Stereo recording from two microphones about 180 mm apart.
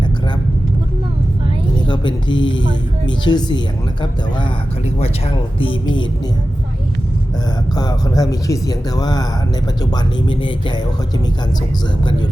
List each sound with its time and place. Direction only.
1.9 s speech: 25° left (ahead or behind)
7.8 s speech: 20° left (ahead or behind)